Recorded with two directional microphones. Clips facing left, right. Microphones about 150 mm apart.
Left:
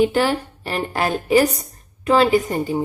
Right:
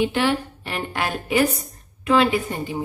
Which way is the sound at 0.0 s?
40° left (ahead or behind).